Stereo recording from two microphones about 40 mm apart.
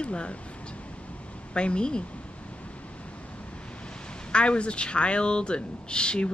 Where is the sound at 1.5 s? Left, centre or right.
Left.